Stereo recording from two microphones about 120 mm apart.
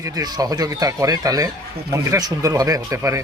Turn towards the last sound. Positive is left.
turn(degrees=-25)  # may be behind; listen again after turning